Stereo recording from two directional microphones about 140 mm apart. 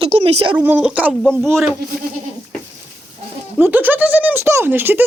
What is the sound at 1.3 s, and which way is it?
Speech, 5° left (ahead or behind).